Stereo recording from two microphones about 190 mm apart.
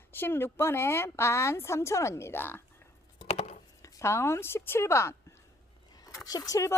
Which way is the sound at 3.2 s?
35° left (ahead or behind).